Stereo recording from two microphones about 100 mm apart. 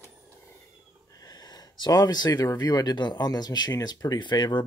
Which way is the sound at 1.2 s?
40° left (ahead or behind).